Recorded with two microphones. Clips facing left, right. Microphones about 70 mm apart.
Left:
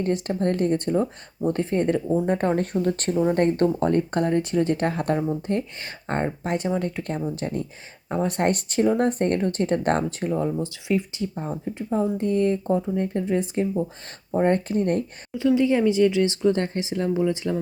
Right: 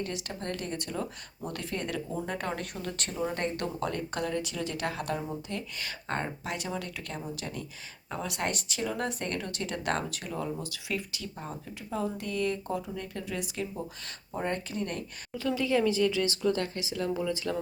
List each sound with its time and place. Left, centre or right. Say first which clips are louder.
0.0 s speech: left 12 dB; left
15.4 s speech: left 8 dB; left